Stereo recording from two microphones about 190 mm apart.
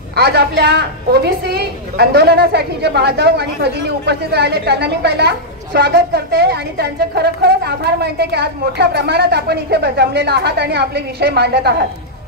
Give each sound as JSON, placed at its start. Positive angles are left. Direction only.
{"t": 0.1, "sound": "a woman's voice", "side_deg": -55}